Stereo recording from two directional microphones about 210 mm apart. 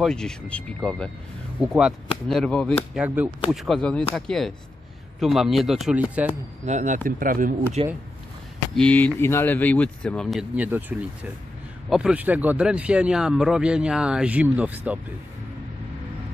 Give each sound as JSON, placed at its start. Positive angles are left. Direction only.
{"t": 0.0, "sound": "speech", "side_deg": 5}
{"t": 6.6, "sound": "speech", "side_deg": -35}
{"t": 7.8, "sound": "speech", "side_deg": -30}
{"t": 8.7, "sound": "speech", "side_deg": 5}